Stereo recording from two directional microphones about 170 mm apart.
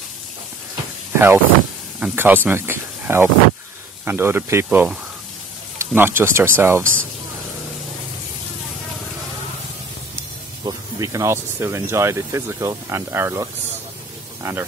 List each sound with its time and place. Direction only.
1.1 s speech: 15° right (ahead or behind)
10.6 s speech: 20° right (ahead or behind)